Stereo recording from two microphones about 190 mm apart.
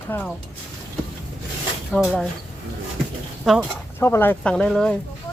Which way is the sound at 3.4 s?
Centre (ahead or behind).